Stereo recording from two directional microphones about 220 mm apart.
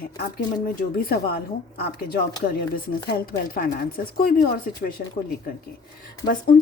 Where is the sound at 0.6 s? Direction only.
40° left (ahead or behind).